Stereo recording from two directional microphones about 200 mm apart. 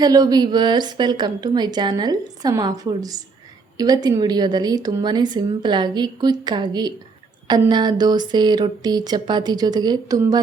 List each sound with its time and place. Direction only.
0.0 s a woman's voice: 20° right (ahead or behind)